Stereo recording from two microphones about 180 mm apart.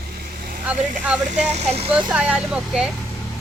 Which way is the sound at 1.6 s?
35° right (ahead or behind).